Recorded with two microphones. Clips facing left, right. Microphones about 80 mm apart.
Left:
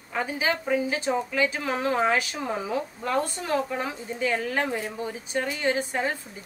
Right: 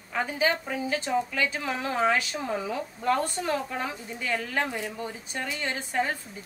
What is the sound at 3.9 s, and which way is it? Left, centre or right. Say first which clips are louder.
A woman's voice: left 4 dB; left.